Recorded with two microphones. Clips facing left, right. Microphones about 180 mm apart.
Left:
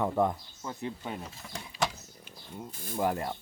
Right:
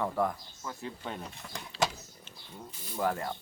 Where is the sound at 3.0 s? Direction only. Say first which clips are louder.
Left 1 dB; 20° left (ahead or behind).